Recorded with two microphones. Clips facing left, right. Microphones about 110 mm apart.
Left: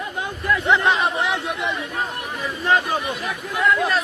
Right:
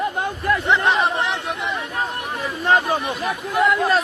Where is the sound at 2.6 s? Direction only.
35° right (ahead or behind).